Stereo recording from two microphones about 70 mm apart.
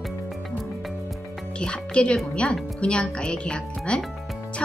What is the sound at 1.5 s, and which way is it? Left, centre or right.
Speech, centre.